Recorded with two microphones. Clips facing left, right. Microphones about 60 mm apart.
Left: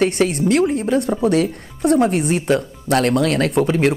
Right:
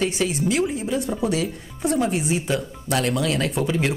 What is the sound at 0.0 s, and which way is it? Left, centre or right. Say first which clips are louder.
Speech: left 6 dB; left.